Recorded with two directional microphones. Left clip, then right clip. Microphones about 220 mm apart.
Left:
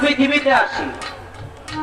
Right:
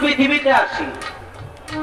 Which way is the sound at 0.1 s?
15° left (ahead or behind).